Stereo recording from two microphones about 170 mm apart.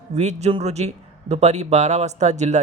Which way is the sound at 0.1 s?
40° right (ahead or behind).